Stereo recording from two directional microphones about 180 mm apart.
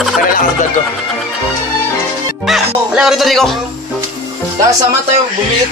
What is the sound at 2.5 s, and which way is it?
Speech, centre (ahead or behind).